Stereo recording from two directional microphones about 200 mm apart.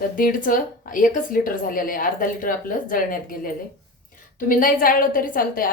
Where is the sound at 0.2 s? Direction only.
45° left (ahead or behind).